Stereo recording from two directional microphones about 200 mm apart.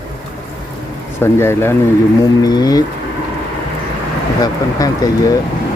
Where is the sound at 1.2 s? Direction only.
10° left (ahead or behind).